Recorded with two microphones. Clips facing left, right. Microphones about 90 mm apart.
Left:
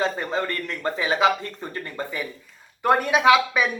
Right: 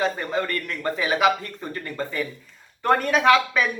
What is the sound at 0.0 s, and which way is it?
Speech, 25° left (ahead or behind).